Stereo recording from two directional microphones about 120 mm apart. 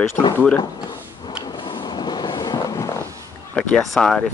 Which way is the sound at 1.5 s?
40° left (ahead or behind).